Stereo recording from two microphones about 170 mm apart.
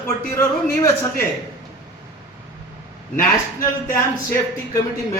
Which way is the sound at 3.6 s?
20° left (ahead or behind).